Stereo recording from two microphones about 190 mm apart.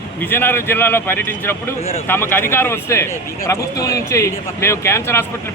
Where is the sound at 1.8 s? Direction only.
30° left (ahead or behind).